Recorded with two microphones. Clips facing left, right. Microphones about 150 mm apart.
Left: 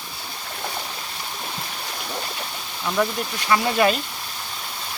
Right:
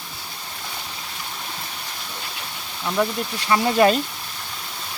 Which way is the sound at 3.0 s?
15° right (ahead or behind).